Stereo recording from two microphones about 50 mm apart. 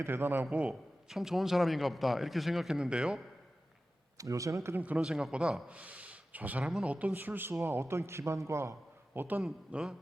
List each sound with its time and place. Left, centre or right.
0.0 s speech: right
0.7 s a man's voice: centre
4.3 s speech: right
4.8 s speech: right
5.0 s a man's voice: centre
5.3 s speech: right
7.1 s a man's voice: right
9.1 s a man's voice: right
9.7 s speech: right